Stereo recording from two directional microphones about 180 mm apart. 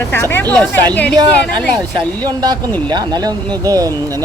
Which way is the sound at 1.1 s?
25° right (ahead or behind).